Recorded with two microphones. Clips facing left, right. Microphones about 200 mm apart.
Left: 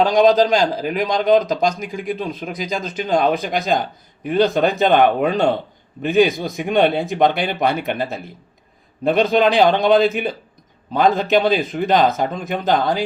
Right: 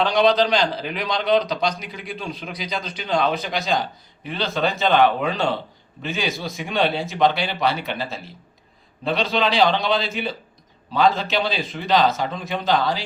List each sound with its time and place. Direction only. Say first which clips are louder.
0.0 s a man's voice: left 4 dB; 45° left (ahead or behind)